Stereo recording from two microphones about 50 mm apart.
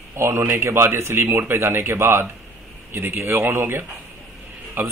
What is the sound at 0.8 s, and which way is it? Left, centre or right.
A man's voice, right.